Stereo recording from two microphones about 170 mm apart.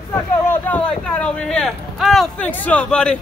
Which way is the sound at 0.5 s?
10° left (ahead or behind).